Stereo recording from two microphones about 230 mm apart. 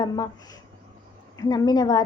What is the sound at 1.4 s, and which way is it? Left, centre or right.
Speech, centre.